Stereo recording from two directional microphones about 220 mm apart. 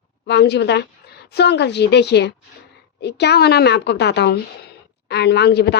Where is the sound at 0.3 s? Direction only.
50° left (ahead or behind).